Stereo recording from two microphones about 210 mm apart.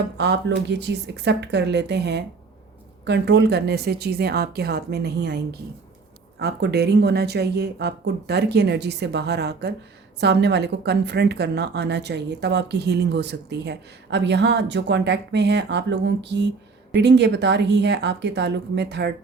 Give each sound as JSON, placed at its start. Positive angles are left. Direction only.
{"t": 0.2, "sound": "a woman's voice", "side_deg": -55}